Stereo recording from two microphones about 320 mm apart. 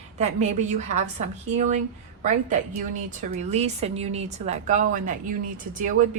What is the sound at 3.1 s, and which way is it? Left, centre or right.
A woman's voice, centre.